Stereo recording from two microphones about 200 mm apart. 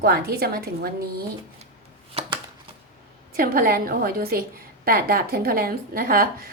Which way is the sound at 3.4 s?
45° right (ahead or behind).